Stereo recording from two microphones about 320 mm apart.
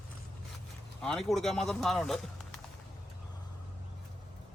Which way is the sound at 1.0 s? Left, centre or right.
Centre.